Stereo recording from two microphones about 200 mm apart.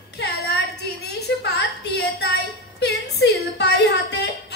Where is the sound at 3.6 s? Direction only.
55° left (ahead or behind).